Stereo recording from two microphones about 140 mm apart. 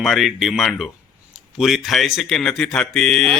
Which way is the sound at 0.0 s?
Centre (ahead or behind).